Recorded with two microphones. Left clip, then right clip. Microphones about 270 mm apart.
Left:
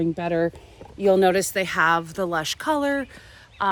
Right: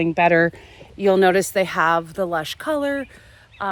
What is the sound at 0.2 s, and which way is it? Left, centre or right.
A woman's voice, right.